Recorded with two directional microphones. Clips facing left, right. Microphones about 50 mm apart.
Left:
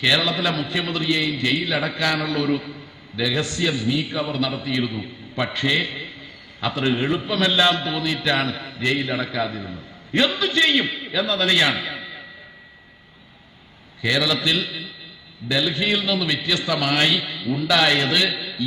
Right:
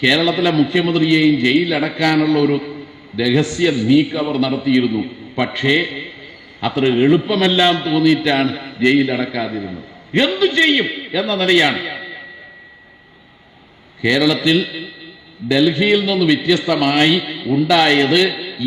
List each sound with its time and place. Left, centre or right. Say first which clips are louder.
0.0 s a man's voice: right 6 dB; right
14.0 s a man's voice: right 6 dB; right